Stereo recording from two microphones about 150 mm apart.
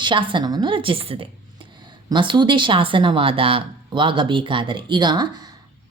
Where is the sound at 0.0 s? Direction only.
30° right (ahead or behind).